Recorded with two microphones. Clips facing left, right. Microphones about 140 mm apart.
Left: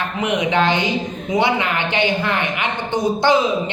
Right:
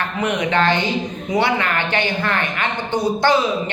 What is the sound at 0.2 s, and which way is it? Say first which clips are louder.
A man's voice: left 1 dB; 15° left (ahead or behind).